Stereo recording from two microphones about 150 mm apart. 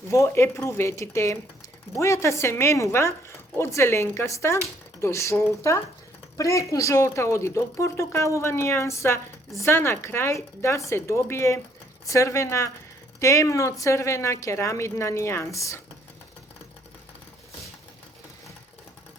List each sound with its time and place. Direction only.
0.1 s a woman's voice: 20° left (ahead or behind)